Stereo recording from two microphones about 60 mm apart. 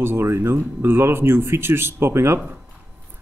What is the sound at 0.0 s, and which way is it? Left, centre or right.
Speech, right.